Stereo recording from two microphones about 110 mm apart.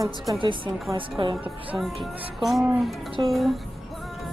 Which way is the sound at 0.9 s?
50° right (ahead or behind).